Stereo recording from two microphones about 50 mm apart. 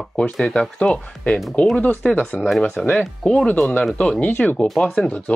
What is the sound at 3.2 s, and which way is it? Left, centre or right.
Speech, centre.